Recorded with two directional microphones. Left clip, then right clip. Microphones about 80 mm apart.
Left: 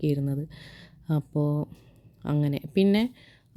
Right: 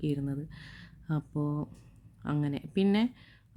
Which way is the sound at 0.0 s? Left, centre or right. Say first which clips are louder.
Left 5 dB; left.